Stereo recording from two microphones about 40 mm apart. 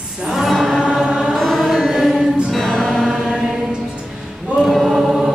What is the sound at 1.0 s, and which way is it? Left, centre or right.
Music, centre.